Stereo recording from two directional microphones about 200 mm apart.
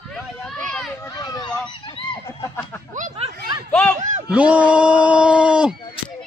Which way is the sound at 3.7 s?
5° left (ahead or behind).